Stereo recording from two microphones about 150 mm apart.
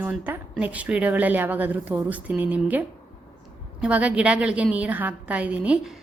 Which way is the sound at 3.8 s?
10° right (ahead or behind).